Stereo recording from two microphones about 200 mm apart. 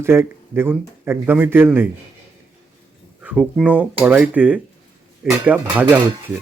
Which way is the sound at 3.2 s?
5° right (ahead or behind).